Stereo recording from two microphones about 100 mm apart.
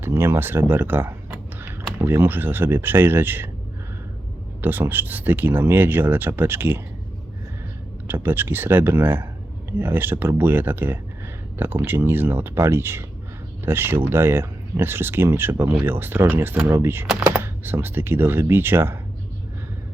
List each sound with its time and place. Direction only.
0.0 s a sound: 25° right (ahead or behind)
2.0 s speech: 20° right (ahead or behind)
4.6 s speech: 20° right (ahead or behind)
8.0 s speech: 20° right (ahead or behind)